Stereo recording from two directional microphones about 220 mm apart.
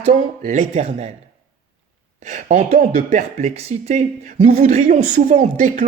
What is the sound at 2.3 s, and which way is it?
Speech, 35° right (ahead or behind).